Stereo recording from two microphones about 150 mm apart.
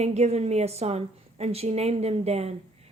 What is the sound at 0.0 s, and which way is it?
Speech, 45° right (ahead or behind).